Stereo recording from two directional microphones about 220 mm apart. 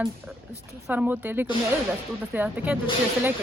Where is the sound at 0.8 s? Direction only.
5° right (ahead or behind).